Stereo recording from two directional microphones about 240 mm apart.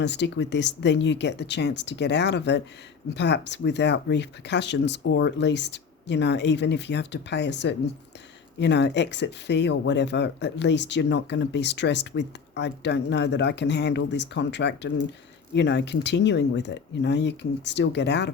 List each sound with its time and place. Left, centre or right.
0.0 s speech: left